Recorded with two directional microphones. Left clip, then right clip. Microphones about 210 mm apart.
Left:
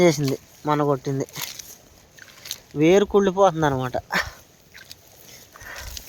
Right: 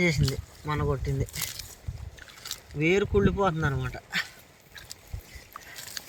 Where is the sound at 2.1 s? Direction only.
15° left (ahead or behind).